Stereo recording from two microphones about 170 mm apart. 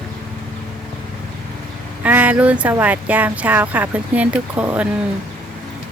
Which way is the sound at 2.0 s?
10° right (ahead or behind).